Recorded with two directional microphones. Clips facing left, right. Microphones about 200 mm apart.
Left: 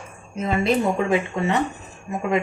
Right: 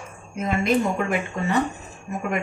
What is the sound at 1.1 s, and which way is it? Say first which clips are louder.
Speech: left 3 dB; 20° left (ahead or behind).